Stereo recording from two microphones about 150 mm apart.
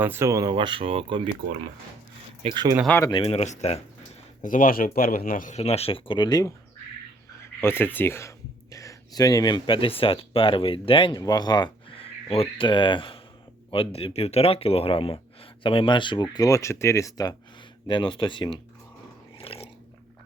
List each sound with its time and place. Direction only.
0.0 s speech: 15° right (ahead or behind); by 1.3 s 40° right (ahead or behind)
2.4 s speech: 30° right (ahead or behind)
3.0 s speech: 25° left (ahead or behind)
3.2 s speech: 45° left (ahead or behind)
4.4 s speech: 65° left (ahead or behind); by 6.5 s 25° left (ahead or behind)
7.4 s speech: 15° left (ahead or behind); by 18.5 s 30° left (ahead or behind)
19.4 s dog: 40° left (ahead or behind)